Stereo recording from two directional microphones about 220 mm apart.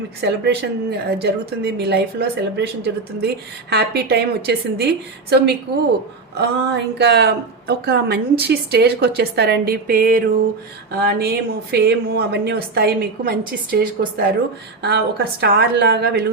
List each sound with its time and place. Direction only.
0.2 s a woman's voice: 50° right (ahead or behind)
6.3 s a woman's voice: 50° right (ahead or behind)